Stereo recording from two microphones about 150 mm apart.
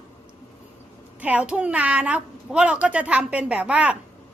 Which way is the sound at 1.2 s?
10° right (ahead or behind).